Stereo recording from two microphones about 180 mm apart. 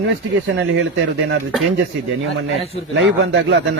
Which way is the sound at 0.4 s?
80° right.